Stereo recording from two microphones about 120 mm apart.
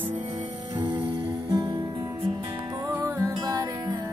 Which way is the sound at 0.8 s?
45° right (ahead or behind).